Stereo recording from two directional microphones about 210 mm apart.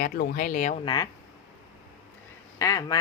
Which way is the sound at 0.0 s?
45° left (ahead or behind).